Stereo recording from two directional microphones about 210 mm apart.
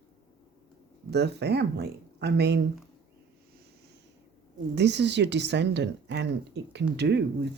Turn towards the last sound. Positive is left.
turn(degrees=-50)  # may be behind; listen again after turning